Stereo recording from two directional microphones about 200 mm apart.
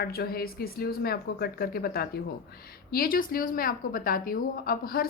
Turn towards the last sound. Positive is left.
turn(degrees=50)  # may be behind; listen again after turning